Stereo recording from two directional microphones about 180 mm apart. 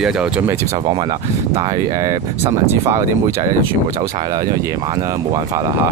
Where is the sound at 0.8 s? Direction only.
25° right (ahead or behind).